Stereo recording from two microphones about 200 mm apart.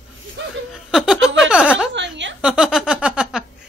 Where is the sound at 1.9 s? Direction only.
60° right (ahead or behind).